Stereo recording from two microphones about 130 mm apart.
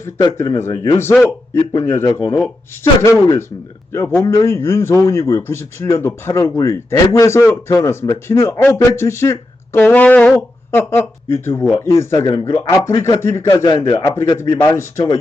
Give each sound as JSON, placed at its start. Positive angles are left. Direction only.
{"t": 0.3, "sound": "speech", "side_deg": 20}
{"t": 13.7, "sound": "a man's voice", "side_deg": 35}
{"t": 14.3, "sound": "speech", "side_deg": 25}